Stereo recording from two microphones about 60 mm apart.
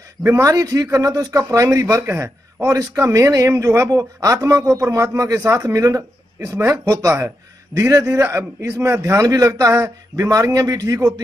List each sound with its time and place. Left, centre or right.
0.4 s speech: right
1.5 s a man's voice: right
2.0 s a man's voice: right
2.7 s a man's voice: right
4.8 s a man's voice: right
7.2 s a man's voice: right